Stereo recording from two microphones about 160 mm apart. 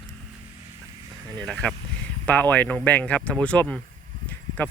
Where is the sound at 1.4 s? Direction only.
5° left (ahead or behind).